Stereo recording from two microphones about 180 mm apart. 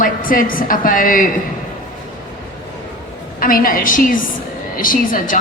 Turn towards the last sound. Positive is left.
turn(degrees=50)  # may be behind; listen again after turning